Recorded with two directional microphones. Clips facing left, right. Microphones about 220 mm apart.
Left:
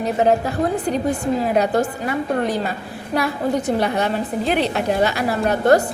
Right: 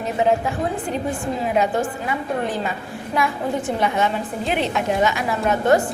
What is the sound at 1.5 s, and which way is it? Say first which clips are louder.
A woman's voice: left 2 dB; 40° left (ahead or behind).